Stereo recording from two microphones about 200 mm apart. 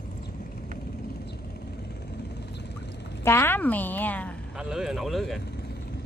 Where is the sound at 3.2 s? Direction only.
10° left (ahead or behind).